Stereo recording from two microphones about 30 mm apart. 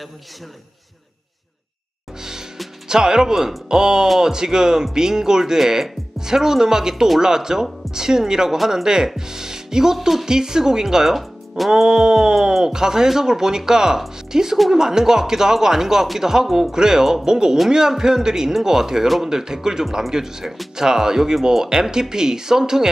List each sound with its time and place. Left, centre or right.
2.9 s speech: centre
9.0 s music: centre
9.9 s speech: centre
10.2 s speech: right
11.1 s music: centre
11.8 s speech: centre
16.4 s speech: centre
16.7 s speech: centre